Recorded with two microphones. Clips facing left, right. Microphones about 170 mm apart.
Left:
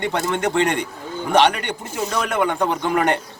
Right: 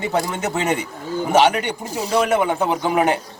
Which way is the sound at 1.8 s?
35° right (ahead or behind).